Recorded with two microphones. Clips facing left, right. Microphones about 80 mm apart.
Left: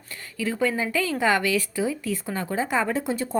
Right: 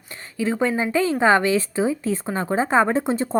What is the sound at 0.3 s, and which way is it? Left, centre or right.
A woman's voice, right.